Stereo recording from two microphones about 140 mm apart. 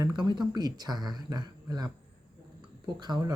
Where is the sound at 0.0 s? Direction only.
30° right (ahead or behind).